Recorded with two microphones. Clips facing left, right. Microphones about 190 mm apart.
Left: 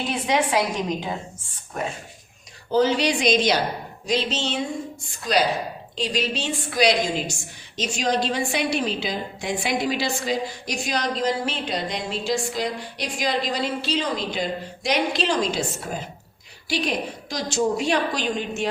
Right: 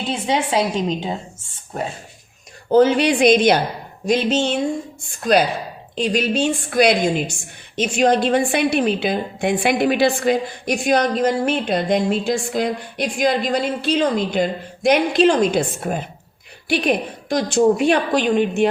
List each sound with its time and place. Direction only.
0.1 s a woman's voice: 25° right (ahead or behind)
2.6 s a woman's voice: 55° right (ahead or behind)